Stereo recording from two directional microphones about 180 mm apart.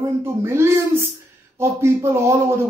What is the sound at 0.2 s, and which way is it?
Speech, 15° right (ahead or behind).